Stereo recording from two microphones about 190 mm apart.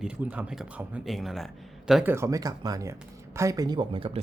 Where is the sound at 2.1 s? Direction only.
15° right (ahead or behind).